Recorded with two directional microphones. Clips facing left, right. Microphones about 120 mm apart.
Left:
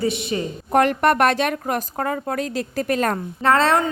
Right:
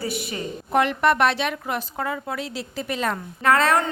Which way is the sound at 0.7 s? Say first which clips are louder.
Left 3 dB; 45° left (ahead or behind).